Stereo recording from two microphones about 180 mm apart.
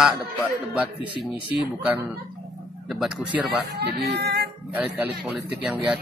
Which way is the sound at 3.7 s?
65° right (ahead or behind).